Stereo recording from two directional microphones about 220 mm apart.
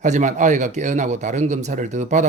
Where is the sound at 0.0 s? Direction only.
35° right (ahead or behind).